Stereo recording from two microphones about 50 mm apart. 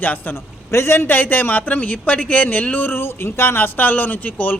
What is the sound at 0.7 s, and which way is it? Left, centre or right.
A man's voice, left.